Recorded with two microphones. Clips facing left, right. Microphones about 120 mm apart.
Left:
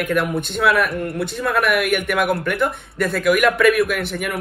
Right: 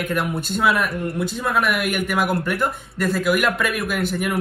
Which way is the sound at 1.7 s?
60° left (ahead or behind).